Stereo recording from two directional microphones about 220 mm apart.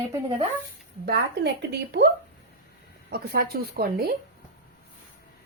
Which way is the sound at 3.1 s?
45° right (ahead or behind).